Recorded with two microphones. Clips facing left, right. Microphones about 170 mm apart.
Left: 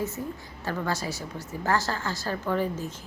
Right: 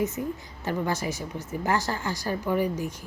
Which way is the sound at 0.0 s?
20° right (ahead or behind).